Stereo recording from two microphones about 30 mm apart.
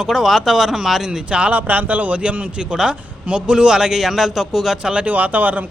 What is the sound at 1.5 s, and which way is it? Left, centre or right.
Speech, right.